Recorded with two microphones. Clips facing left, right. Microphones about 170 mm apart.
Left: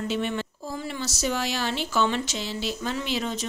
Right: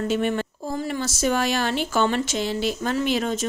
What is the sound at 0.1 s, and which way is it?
Speech, 50° right (ahead or behind).